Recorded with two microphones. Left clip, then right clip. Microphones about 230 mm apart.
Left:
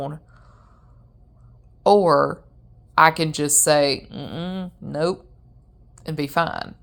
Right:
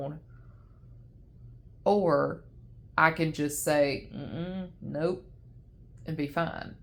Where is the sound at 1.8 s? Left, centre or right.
Left.